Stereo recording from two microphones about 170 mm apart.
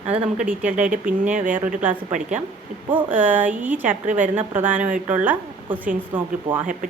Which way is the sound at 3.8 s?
50° right (ahead or behind).